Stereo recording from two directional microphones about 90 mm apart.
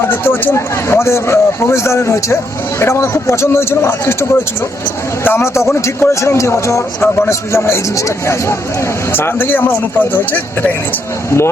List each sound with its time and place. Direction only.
0.1 s speech: 25° left (ahead or behind)